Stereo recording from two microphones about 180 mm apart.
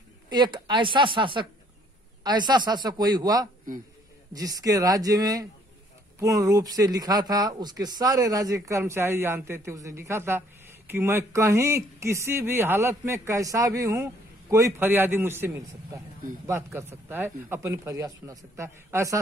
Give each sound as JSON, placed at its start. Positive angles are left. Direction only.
{"t": 0.3, "sound": "speech", "side_deg": -25}